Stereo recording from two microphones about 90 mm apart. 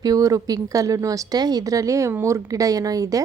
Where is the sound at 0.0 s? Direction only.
40° right (ahead or behind).